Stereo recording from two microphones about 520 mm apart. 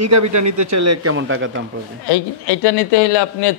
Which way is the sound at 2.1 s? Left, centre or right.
Left.